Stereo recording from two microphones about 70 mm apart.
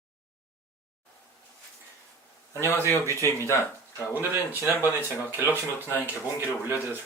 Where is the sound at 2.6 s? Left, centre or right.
Left.